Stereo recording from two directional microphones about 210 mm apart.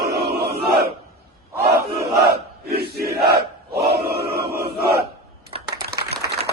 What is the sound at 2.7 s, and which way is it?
Crowd, 50° right (ahead or behind).